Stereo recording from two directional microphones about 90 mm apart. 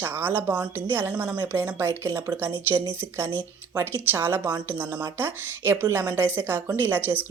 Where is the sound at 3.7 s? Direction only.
25° right (ahead or behind).